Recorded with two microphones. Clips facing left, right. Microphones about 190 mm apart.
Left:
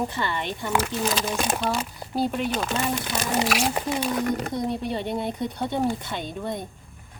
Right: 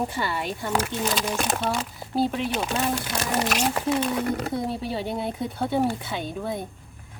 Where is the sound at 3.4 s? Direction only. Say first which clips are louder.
Left 1 dB; 10° left (ahead or behind).